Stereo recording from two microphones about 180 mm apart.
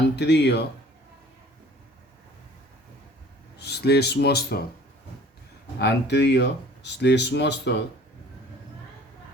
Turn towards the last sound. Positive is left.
turn(degrees=70)  # may be behind; listen again after turning